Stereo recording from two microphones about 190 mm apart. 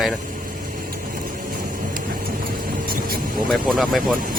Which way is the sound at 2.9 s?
50° right (ahead or behind).